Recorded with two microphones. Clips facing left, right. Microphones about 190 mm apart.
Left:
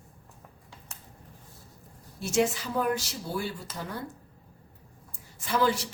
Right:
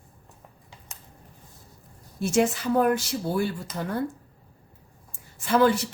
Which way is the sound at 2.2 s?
55° right (ahead or behind).